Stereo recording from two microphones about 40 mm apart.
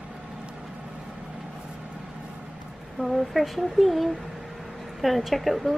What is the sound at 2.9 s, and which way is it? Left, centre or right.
A woman's voice, centre.